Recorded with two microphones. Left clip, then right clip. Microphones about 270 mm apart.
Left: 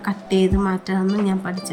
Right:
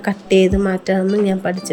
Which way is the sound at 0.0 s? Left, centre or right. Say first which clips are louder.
Right 6 dB; centre.